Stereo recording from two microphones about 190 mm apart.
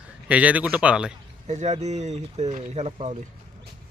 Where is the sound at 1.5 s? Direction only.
35° right (ahead or behind).